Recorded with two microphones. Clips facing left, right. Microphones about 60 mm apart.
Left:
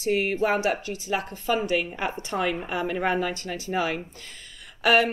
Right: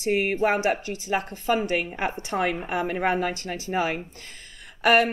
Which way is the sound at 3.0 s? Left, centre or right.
Centre.